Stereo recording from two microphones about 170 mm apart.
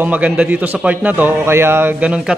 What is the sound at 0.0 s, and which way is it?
A man's voice, 10° right (ahead or behind).